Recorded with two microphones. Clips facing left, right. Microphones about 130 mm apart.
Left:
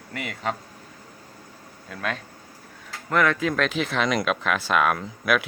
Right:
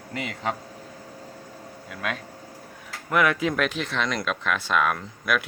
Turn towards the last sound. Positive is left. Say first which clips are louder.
# left 3 dB
turn(degrees=5)  # may be behind; listen again after turning